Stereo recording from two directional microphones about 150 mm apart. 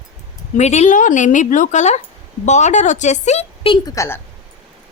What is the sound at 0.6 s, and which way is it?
A woman's voice, 50° left (ahead or behind).